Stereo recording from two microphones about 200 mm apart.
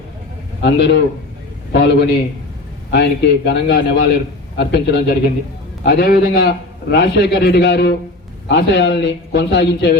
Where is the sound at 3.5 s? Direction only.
60° left (ahead or behind).